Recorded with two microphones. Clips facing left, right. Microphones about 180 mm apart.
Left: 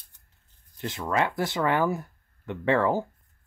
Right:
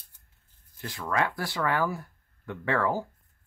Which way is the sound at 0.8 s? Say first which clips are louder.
Left 2 dB; 20° left (ahead or behind).